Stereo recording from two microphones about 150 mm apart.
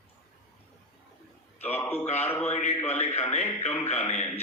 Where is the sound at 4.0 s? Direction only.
10° left (ahead or behind).